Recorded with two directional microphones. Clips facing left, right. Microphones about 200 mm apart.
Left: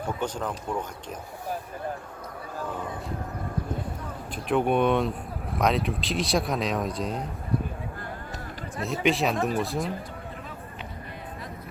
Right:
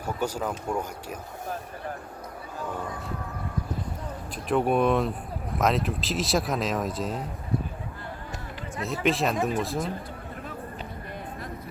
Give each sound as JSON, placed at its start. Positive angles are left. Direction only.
{"t": 0.0, "sound": "speech", "side_deg": -10}
{"t": 4.4, "sound": "speech", "side_deg": 0}
{"t": 8.8, "sound": "speech", "side_deg": 0}